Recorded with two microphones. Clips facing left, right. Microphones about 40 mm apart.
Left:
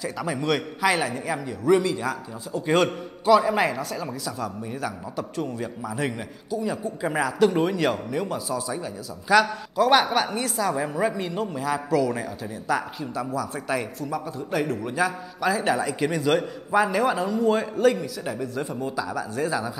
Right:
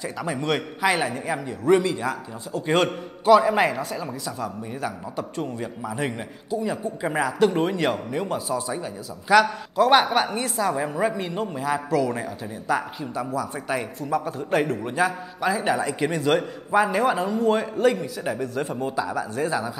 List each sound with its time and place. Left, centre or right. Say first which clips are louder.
0.0 s a woman's voice: even; centre
4.8 s a man's voice: right 2 dB; right
10.2 s a woman's voice: right 1 dB; centre
14.1 s a man's voice: right 5 dB; right
14.8 s a man's voice: right 1 dB; right
15.5 s a woman's voice: even; centre
16.0 s a man's voice: even; right
16.3 s a woman's voice: right 1 dB; centre
18.0 s a man's voice: right 2 dB; right
18.5 s a woman's voice: right 2 dB; centre